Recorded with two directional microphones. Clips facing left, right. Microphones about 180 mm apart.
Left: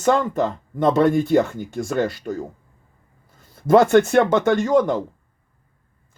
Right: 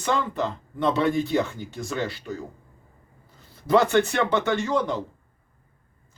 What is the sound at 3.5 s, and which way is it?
Speech, 50° left (ahead or behind).